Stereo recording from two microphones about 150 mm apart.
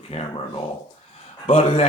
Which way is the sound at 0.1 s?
45° left (ahead or behind).